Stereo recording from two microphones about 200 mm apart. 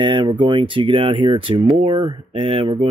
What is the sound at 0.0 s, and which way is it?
Speech, 25° right (ahead or behind).